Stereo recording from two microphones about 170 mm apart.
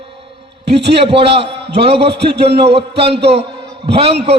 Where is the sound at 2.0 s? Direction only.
80° right.